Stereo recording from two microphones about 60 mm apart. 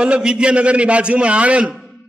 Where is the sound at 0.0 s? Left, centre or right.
Centre.